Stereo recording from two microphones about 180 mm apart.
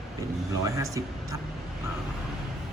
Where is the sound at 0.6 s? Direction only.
20° right (ahead or behind).